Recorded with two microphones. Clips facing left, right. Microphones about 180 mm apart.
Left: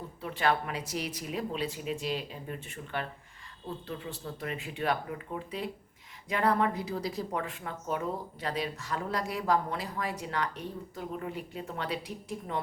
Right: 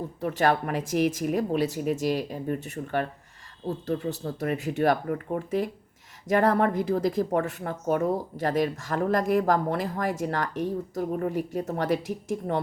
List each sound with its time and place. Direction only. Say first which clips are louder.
0.2 s a woman's voice: right 5 dB; 45° right (ahead or behind)